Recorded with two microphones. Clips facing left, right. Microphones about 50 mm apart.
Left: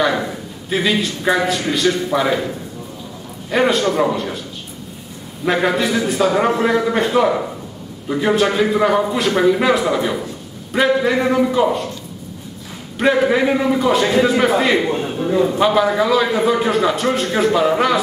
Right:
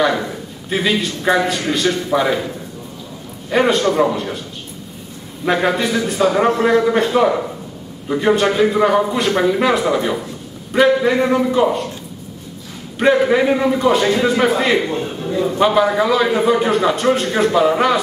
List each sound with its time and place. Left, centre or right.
0.0 s a man's voice: centre
5.4 s speech: centre
13.0 s speech: centre
14.9 s speech: centre